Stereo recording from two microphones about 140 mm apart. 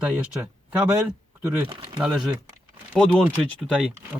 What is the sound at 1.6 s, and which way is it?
Speech, 35° right (ahead or behind).